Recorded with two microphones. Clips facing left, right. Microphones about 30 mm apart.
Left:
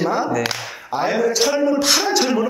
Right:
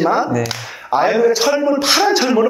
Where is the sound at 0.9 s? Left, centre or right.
Centre.